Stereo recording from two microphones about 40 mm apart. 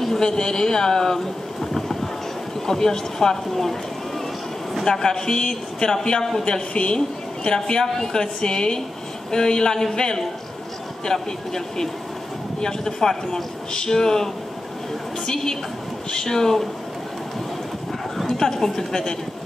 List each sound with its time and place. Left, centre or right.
0.0 s a man's voice: centre
4.7 s a man's voice: centre
6.4 s a woman's voice: left
18.4 s a man's voice: centre